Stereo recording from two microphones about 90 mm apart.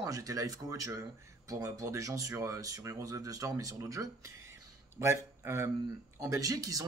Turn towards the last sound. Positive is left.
turn(degrees=-40)  # may be behind; listen again after turning